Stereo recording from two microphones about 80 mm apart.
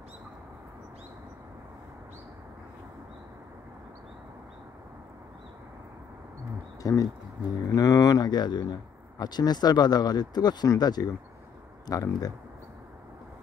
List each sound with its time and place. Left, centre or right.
6.8 s speech: left
7.7 s speech: left